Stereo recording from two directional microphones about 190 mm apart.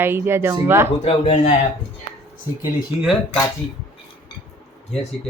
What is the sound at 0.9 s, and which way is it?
Speech, 30° left (ahead or behind).